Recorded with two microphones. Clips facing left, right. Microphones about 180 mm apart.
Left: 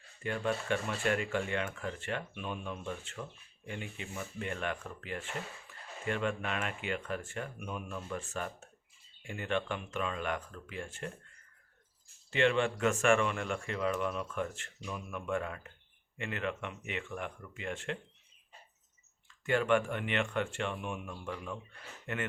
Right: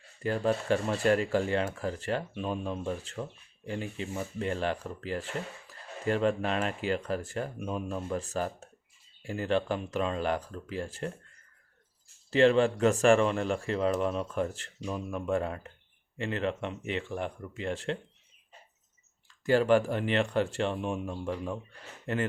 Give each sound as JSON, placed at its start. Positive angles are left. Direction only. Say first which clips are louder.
{"t": 0.2, "sound": "speech", "louder": "right 6 dB", "side_deg": -35}
{"t": 12.3, "sound": "speech", "louder": "right 7 dB", "side_deg": -35}
{"t": 19.5, "sound": "speech", "louder": "right 5 dB", "side_deg": -35}